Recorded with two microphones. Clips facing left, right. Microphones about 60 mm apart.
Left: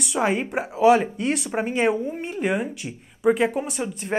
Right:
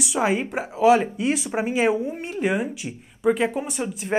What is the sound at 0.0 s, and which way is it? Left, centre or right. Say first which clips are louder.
Speech: even; centre.